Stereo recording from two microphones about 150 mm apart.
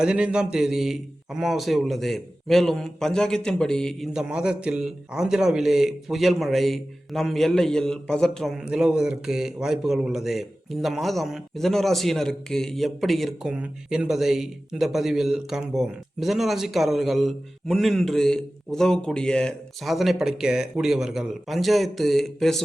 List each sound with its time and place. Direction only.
0.0 s a man's voice: 5° right (ahead or behind)